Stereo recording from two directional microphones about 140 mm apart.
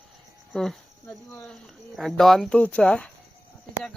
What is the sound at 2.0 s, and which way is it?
Speech, centre (ahead or behind).